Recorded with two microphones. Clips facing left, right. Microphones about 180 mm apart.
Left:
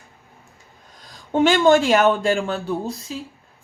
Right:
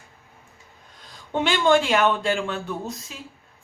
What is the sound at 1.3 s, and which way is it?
A woman's voice, 45° left (ahead or behind).